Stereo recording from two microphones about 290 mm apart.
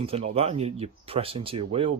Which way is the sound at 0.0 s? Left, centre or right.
Centre.